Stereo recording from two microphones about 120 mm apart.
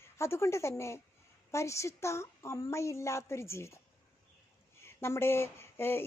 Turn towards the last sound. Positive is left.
turn(degrees=20)  # may be behind; listen again after turning